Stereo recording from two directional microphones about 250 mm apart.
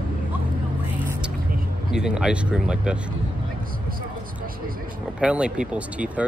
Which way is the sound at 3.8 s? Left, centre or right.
Right.